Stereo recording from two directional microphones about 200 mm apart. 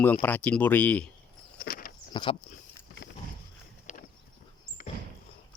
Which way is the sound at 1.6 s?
45° left (ahead or behind).